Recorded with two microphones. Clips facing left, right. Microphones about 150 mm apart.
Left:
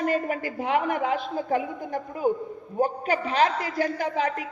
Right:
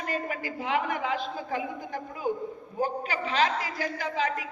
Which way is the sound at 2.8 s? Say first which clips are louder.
Left 5 dB; 55° left (ahead or behind).